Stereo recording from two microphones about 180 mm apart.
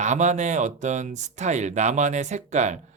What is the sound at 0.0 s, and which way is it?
Speech, 40° right (ahead or behind).